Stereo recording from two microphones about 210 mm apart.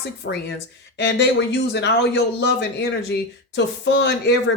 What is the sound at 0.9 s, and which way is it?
Speech, 55° left (ahead or behind).